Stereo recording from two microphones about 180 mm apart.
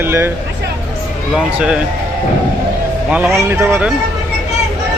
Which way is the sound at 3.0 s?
10° right (ahead or behind).